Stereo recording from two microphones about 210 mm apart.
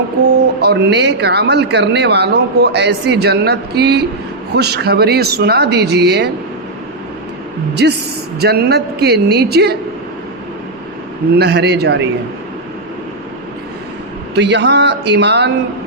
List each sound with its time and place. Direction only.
0.6 s speech: 55° right (ahead or behind)
7.8 s speech: 50° right (ahead or behind)
11.3 s speech: 50° right (ahead or behind)
14.3 s speech: 55° right (ahead or behind)